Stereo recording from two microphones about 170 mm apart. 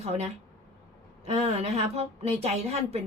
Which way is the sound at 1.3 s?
40° right (ahead or behind).